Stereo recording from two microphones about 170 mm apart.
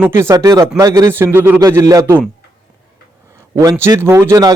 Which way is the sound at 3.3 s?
20° right (ahead or behind).